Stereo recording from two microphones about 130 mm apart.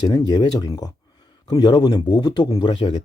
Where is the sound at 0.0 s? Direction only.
30° left (ahead or behind).